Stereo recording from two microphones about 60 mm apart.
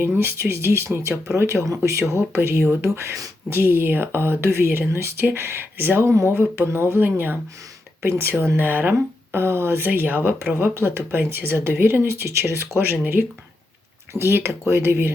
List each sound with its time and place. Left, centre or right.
0.0 s speech: right